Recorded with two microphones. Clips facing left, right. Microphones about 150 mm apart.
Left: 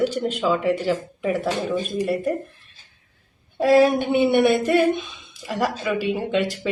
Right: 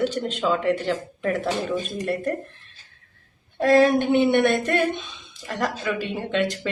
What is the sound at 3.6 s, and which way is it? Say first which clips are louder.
A woman's voice: left 1 dB; 10° left (ahead or behind).